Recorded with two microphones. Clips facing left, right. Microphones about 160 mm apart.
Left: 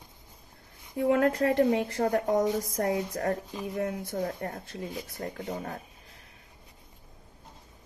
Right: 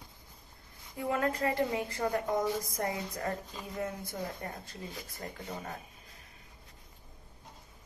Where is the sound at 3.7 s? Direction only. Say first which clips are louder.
Left 6 dB; 65° left (ahead or behind).